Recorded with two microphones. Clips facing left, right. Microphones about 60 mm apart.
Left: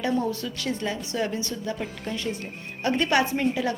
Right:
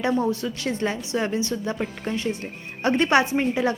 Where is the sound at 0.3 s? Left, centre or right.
Right.